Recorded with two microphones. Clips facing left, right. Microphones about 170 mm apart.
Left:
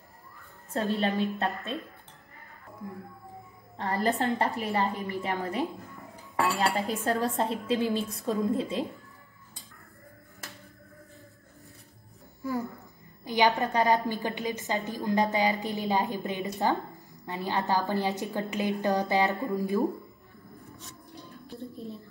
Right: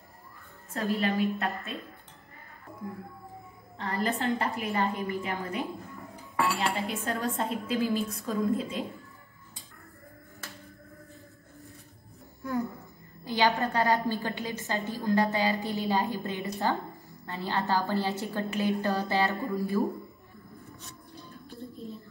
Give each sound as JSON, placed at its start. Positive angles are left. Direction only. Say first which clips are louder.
{"t": 0.7, "sound": "a woman's voice", "louder": "left 1 dB", "side_deg": 35}
{"t": 3.7, "sound": "a woman's voice", "louder": "left 3 dB", "side_deg": 40}
{"t": 6.6, "sound": "a woman's voice", "louder": "left 3 dB", "side_deg": 35}
{"t": 12.4, "sound": "a sound", "louder": "right 1 dB", "side_deg": 0}
{"t": 13.2, "sound": "a woman's voice", "louder": "left 1 dB", "side_deg": 20}